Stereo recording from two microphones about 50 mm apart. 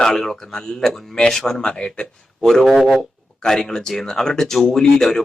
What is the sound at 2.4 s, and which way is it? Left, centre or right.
Speech, centre.